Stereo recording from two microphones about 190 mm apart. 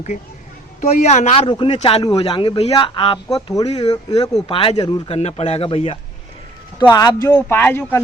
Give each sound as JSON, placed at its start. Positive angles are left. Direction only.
{"t": 0.8, "sound": "a man's voice", "side_deg": 40}
{"t": 6.7, "sound": "a man's voice", "side_deg": 20}